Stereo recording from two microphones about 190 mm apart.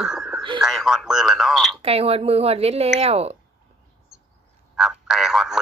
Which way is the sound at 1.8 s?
30° right (ahead or behind).